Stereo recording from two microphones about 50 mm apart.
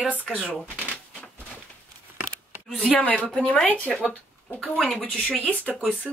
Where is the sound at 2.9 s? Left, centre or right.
Left.